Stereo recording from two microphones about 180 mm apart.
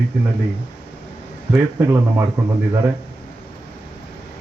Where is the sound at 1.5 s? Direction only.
15° right (ahead or behind).